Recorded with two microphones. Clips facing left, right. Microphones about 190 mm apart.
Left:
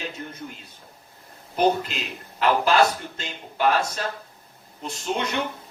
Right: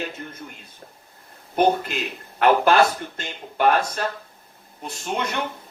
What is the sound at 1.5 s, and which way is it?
A man's voice, 55° right (ahead or behind).